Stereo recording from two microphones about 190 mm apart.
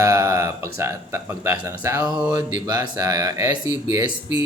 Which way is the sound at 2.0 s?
5° right (ahead or behind).